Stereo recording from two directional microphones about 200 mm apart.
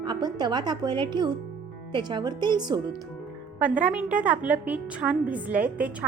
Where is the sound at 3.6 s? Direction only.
5° right (ahead or behind).